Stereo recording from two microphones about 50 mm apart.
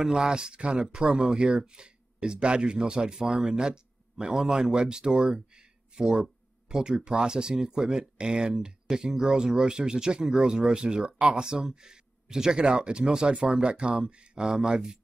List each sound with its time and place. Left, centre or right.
0.0 s speech: centre
5.9 s speech: centre